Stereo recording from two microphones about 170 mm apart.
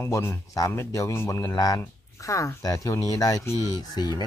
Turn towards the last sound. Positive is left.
turn(degrees=25)  # may be behind; listen again after turning